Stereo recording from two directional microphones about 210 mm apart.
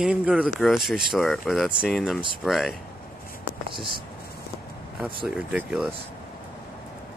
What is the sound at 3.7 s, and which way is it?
Speech, 25° right (ahead or behind).